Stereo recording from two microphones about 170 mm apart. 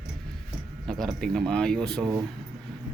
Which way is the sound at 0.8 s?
Centre (ahead or behind).